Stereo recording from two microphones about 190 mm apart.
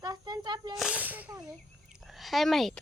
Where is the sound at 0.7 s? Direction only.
5° right (ahead or behind).